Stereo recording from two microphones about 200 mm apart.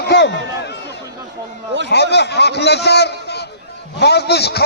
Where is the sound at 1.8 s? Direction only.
55° left (ahead or behind).